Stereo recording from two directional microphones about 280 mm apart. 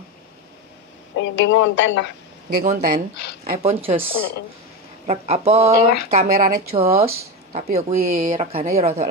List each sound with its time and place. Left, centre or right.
1.1 s speech: left
2.6 s speech: right